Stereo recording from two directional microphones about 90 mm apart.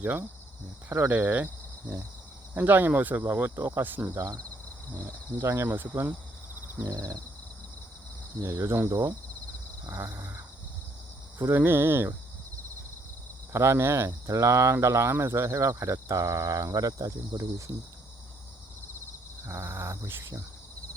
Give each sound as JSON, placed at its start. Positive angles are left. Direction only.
{"t": 0.0, "sound": "speech", "side_deg": -20}
{"t": 2.6, "sound": "speech", "side_deg": -20}
{"t": 4.1, "sound": "speech", "side_deg": -35}
{"t": 6.9, "sound": "speech", "side_deg": -40}
{"t": 8.4, "sound": "speech", "side_deg": -35}
{"t": 8.9, "sound": "speech", "side_deg": -45}
{"t": 9.9, "sound": "speech", "side_deg": -30}
{"t": 11.3, "sound": "speech", "side_deg": -30}
{"t": 13.5, "sound": "speech", "side_deg": -30}
{"t": 19.5, "sound": "speech", "side_deg": -30}